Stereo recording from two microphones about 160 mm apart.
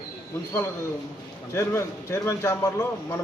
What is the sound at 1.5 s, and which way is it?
A man's voice, 15° left (ahead or behind).